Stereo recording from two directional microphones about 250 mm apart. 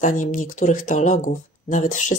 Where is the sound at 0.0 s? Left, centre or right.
Left.